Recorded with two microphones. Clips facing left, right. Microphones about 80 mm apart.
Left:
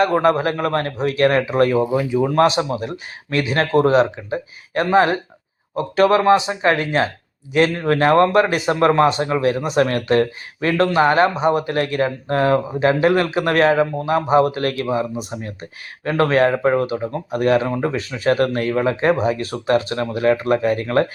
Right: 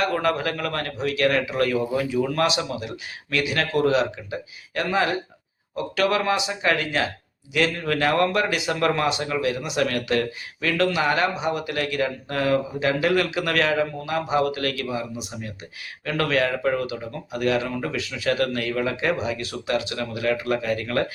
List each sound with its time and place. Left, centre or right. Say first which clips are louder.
0.0 s speech: left 7 dB; left
2.0 s speech: left 7 dB; left